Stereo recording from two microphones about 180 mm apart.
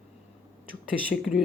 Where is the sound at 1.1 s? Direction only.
55° left (ahead or behind).